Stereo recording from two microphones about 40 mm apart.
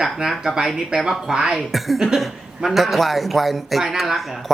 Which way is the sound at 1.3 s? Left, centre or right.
Right.